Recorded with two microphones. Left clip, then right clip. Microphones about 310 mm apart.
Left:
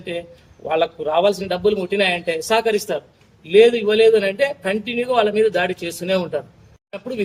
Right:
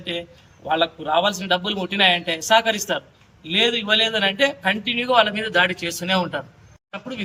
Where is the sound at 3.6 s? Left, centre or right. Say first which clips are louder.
Left 5 dB; right.